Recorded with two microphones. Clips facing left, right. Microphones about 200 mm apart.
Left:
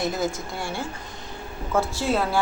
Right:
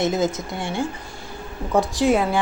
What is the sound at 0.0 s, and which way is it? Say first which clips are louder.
A woman's voice: right 5 dB; 20° right (ahead or behind).